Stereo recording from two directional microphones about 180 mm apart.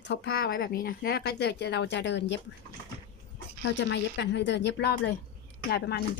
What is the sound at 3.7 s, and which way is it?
A woman's voice, 80° left.